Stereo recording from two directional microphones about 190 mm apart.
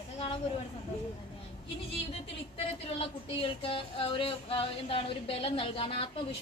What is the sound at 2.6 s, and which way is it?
A woman's voice, 30° left (ahead or behind).